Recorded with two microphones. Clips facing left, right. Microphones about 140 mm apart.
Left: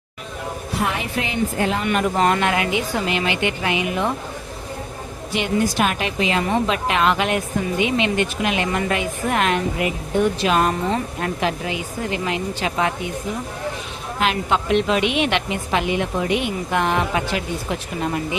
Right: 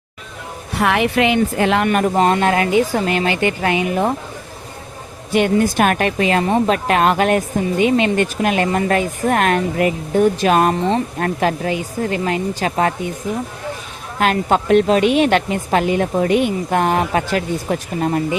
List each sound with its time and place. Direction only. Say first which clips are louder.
0.8 s speech: right 9 dB; 70° right (ahead or behind)
1.9 s speech: right 3 dB; 40° right (ahead or behind)
5.3 s speech: right 6 dB; 50° right (ahead or behind)
14.2 s speech: right 5 dB; 45° right (ahead or behind)